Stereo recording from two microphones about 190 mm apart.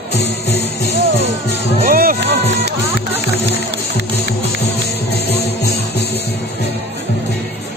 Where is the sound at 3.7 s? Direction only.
65° right (ahead or behind).